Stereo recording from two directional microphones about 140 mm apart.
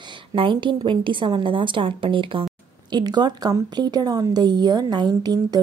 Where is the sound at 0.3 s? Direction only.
35° right (ahead or behind).